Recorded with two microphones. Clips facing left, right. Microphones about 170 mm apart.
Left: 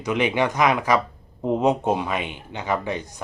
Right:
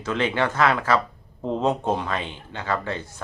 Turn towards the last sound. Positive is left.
turn(degrees=15)  # may be behind; listen again after turning